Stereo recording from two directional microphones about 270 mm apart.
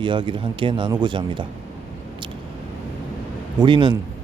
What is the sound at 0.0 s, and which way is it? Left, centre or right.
A man's voice, centre.